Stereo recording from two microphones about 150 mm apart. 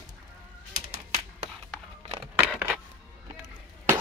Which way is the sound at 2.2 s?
10° right (ahead or behind).